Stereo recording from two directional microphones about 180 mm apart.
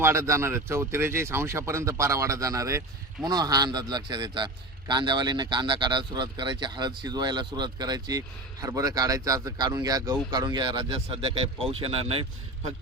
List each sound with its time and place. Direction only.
0.0 s a man's voice: 15° right (ahead or behind); by 12.2 s 35° right (ahead or behind)